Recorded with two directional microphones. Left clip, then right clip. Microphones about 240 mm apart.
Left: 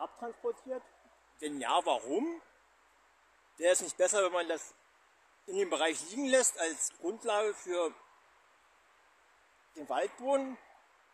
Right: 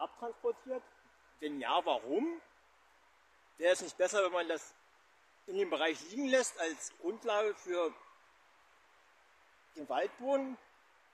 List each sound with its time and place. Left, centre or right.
0.0 s speech: centre
3.5 s speech: centre
9.8 s speech: centre